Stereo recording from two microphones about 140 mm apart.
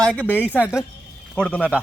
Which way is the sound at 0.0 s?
10° left (ahead or behind).